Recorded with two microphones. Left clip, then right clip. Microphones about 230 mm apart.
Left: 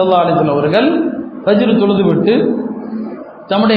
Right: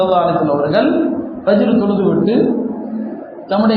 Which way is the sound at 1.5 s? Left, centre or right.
Left.